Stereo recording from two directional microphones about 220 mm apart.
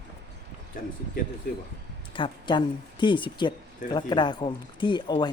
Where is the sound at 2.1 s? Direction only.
20° left (ahead or behind).